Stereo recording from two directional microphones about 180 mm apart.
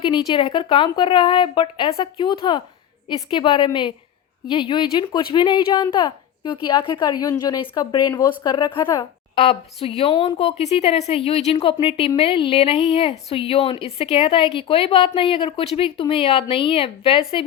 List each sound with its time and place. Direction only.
0.0 s a woman's voice: 25° left (ahead or behind)